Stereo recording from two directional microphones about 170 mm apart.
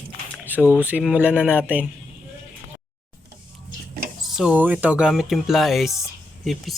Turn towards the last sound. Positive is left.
turn(degrees=0)  # may be behind; listen again after turning